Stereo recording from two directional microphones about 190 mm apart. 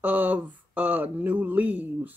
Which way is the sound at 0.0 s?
10° right (ahead or behind).